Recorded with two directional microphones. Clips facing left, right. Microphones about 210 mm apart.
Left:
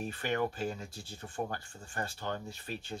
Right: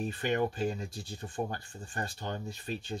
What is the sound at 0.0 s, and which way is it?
Speech, 20° right (ahead or behind).